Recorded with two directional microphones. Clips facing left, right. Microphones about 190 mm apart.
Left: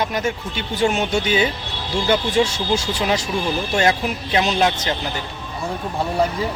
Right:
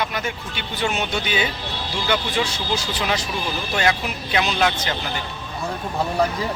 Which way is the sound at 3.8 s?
35° left (ahead or behind).